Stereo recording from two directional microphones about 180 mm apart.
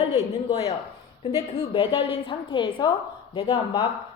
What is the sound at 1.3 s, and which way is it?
A woman's voice, 30° left (ahead or behind).